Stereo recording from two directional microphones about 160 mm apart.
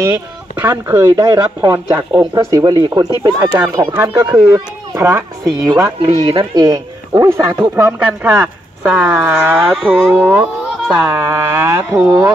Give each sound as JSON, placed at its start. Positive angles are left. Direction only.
{"t": 0.0, "sound": "speech", "side_deg": -15}
{"t": 9.6, "sound": "speech", "side_deg": 0}
{"t": 11.1, "sound": "speech", "side_deg": -20}